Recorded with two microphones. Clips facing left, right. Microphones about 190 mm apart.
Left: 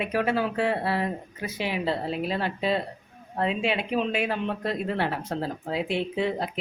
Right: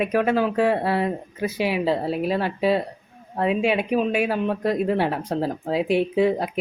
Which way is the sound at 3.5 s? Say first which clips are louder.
Right 7 dB; 10° right (ahead or behind).